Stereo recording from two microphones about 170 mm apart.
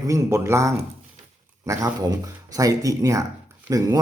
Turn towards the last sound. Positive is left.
turn(degrees=-20)  # may be behind; listen again after turning